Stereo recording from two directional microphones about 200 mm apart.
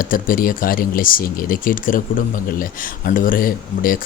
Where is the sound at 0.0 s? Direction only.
45° left (ahead or behind).